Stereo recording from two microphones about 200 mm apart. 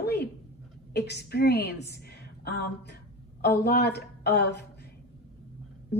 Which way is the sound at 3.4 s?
55° left (ahead or behind).